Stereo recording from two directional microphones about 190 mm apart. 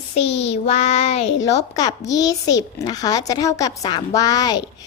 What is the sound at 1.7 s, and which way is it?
A child's voice, 20° left (ahead or behind).